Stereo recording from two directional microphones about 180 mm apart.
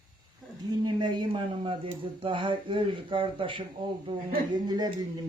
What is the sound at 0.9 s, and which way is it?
A man's voice, 25° right (ahead or behind).